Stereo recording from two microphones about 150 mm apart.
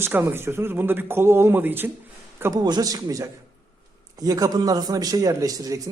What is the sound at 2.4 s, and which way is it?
A man's voice, 25° right (ahead or behind).